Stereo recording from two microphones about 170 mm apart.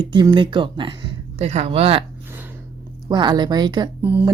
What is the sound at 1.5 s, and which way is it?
Speech, 40° right (ahead or behind).